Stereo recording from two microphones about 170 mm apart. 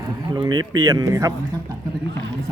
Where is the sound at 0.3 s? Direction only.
25° right (ahead or behind).